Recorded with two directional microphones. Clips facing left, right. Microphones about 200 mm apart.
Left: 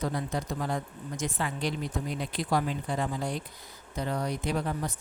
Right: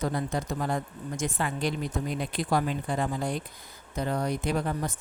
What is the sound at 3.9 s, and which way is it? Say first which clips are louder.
Speech: right 2 dB; 50° right (ahead or behind).